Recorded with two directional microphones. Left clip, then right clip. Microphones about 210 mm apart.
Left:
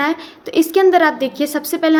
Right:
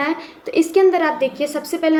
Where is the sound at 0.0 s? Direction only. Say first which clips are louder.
Left 3 dB; 40° left (ahead or behind).